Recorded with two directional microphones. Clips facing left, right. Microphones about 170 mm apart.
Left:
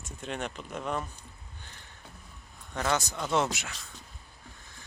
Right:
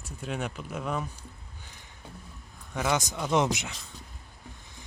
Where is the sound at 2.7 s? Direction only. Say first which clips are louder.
Right 1 dB; 10° right (ahead or behind).